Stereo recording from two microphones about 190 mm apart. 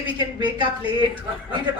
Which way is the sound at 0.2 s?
25° right (ahead or behind).